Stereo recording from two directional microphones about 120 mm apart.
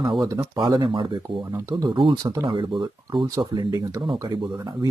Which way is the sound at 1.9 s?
45° right (ahead or behind).